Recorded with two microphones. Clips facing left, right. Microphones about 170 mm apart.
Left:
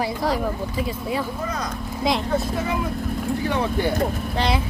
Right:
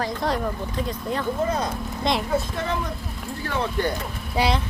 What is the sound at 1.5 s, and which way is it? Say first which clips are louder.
Speech: right 3 dB; 30° right (ahead or behind).